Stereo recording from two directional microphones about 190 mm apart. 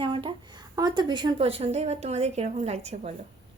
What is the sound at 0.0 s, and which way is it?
A woman's voice, 25° right (ahead or behind).